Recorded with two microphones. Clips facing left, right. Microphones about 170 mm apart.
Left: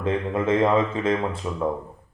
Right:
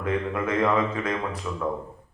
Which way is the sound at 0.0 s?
25° left (ahead or behind).